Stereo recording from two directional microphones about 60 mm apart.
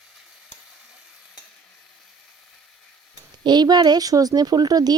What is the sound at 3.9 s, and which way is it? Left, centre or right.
Speech, right.